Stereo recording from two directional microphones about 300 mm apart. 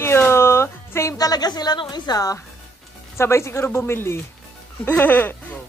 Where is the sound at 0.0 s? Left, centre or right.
Centre.